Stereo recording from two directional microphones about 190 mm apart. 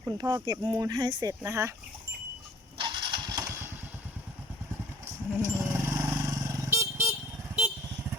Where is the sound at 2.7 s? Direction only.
25° right (ahead or behind).